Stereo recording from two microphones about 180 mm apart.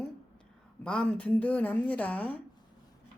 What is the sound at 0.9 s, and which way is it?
A woman's voice, 5° left (ahead or behind).